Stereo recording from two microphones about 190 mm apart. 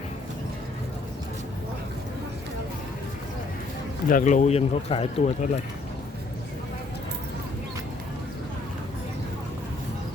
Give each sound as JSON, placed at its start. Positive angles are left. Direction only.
{"t": 4.1, "sound": "speech", "side_deg": 40}